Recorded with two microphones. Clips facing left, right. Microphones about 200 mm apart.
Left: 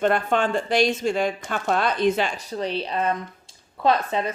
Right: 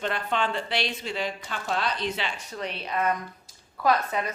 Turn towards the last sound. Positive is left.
turn(degrees=25)  # may be behind; listen again after turning